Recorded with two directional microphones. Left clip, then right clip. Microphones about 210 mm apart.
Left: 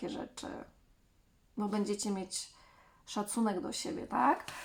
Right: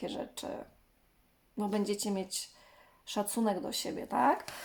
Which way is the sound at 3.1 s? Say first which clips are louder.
Right 2 dB; 25° right (ahead or behind).